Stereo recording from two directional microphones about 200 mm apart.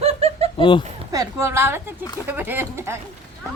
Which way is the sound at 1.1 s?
15° right (ahead or behind).